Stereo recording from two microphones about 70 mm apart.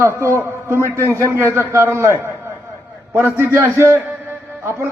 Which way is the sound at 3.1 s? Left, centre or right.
Right.